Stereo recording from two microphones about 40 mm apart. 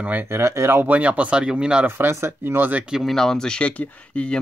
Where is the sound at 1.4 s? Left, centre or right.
Centre.